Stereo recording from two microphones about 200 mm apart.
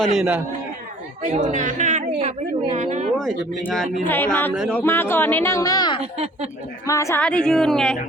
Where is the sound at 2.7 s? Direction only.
35° right (ahead or behind).